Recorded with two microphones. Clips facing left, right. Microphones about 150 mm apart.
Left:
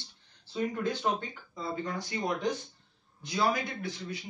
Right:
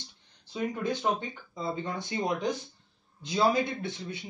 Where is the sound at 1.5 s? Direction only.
20° right (ahead or behind).